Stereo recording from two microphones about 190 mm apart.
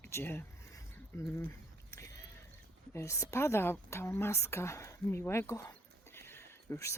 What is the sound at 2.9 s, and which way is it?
A woman's voice, 15° left (ahead or behind).